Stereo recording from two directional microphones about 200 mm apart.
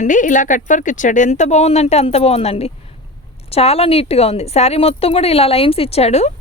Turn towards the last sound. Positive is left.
turn(degrees=35)  # may be behind; listen again after turning